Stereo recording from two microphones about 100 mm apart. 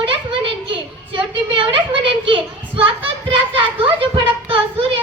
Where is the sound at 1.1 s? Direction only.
60° right (ahead or behind).